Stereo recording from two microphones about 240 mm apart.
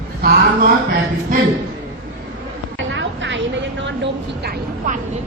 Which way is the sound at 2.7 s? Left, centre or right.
Right.